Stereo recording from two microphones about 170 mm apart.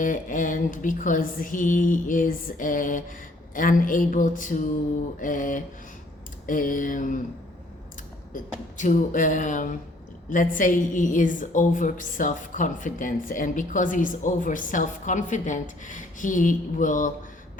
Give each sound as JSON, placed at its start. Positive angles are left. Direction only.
{"t": 0.0, "sound": "a woman's voice", "side_deg": 50}
{"t": 8.8, "sound": "a woman's voice", "side_deg": 50}